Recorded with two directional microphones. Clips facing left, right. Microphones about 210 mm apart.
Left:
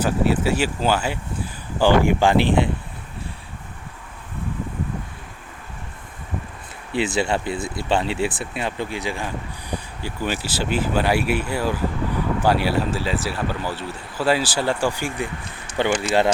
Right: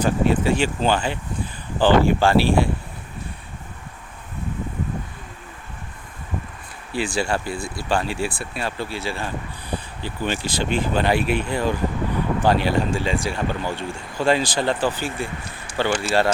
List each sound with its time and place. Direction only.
0.0 s speech: 5° left (ahead or behind)
6.9 s speech: 20° left (ahead or behind)